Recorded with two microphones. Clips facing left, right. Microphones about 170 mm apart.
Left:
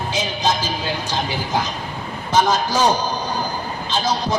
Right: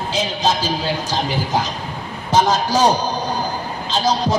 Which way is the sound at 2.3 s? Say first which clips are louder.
Right 2 dB; 35° right (ahead or behind).